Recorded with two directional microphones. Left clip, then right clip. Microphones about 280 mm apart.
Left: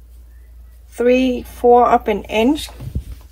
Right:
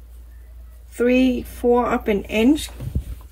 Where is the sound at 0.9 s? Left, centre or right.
Centre.